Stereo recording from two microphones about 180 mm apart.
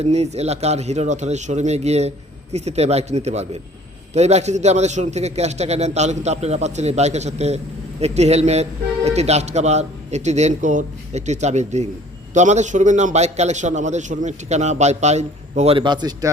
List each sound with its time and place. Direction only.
0.0 s a man's voice: 35° right (ahead or behind)